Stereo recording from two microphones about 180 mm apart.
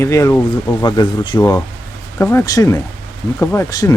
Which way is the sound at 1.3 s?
10° left (ahead or behind).